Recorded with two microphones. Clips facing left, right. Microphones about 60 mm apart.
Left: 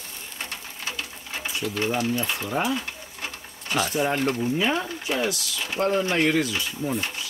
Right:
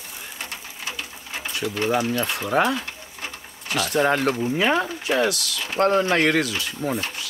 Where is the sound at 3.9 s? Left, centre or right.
Right.